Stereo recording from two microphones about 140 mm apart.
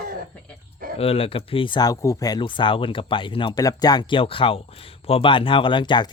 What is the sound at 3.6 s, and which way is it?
Speech, 25° left (ahead or behind).